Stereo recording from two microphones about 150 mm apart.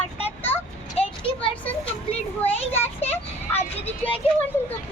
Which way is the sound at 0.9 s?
35° left (ahead or behind).